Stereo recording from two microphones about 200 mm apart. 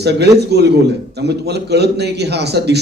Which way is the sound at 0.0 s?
55° right (ahead or behind).